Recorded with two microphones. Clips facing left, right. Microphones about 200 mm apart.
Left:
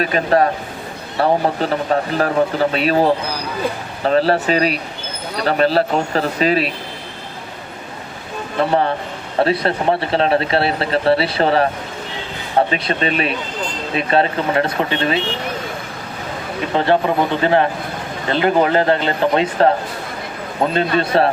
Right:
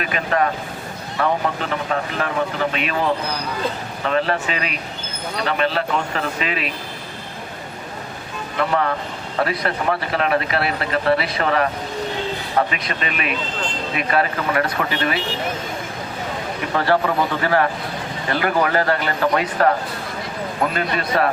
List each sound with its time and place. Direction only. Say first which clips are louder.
0.0 s a man's voice: left 5 dB; 35° left (ahead or behind)
8.5 s a man's voice: left 4 dB; 30° left (ahead or behind)
16.6 s speech: left 3 dB; 20° left (ahead or behind)